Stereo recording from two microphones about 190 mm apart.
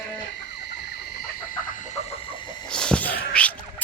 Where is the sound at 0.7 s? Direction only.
55° left (ahead or behind).